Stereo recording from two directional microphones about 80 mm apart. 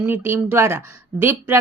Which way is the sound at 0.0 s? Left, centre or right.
Right.